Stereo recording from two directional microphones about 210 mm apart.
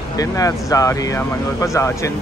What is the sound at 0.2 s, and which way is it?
Speech, 15° left (ahead or behind).